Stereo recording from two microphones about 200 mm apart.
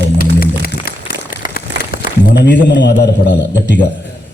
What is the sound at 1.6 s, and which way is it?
A man's voice, 50° left (ahead or behind).